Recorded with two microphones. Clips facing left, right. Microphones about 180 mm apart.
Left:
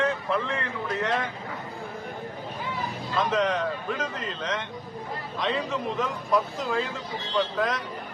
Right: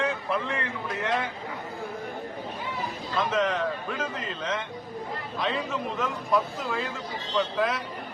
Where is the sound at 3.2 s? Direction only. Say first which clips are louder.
Left 1 dB; centre (ahead or behind).